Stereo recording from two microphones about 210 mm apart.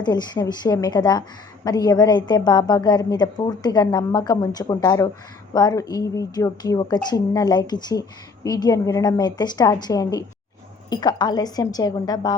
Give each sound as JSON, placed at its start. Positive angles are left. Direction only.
{"t": 0.0, "sound": "a woman's voice", "side_deg": 20}